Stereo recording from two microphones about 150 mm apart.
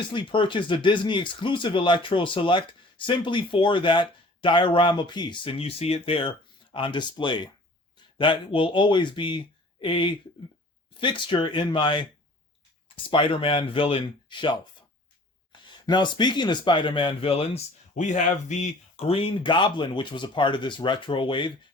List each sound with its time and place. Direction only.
0.1 s speech: 35° left (ahead or behind)
13.1 s speech: 35° left (ahead or behind)